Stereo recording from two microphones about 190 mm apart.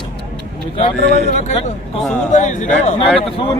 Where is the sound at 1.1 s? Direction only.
40° left (ahead or behind).